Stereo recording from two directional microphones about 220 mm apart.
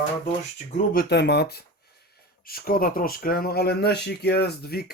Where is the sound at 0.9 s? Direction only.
45° left (ahead or behind).